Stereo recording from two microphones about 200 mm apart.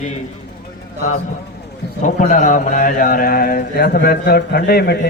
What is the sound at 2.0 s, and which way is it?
A man's voice, 40° left (ahead or behind).